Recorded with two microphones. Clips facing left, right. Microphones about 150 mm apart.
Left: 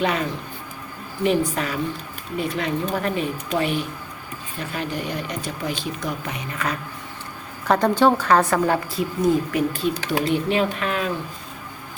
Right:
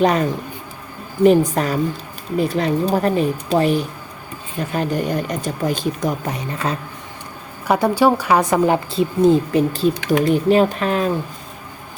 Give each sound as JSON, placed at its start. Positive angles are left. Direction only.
{"t": 0.0, "sound": "speech", "side_deg": -40}
{"t": 7.7, "sound": "a woman's voice", "side_deg": -10}
{"t": 9.9, "sound": "speech", "side_deg": 30}
{"t": 10.2, "sound": "speech", "side_deg": -40}